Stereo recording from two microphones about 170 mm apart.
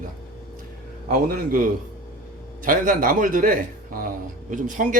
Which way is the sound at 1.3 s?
55° right (ahead or behind).